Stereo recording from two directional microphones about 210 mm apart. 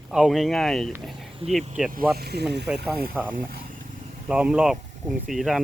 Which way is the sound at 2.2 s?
50° right (ahead or behind).